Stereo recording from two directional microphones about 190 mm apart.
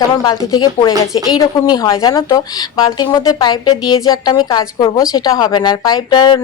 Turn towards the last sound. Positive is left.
turn(degrees=20)  # may be behind; listen again after turning